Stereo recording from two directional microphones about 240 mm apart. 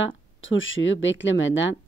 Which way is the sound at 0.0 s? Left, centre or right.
Left.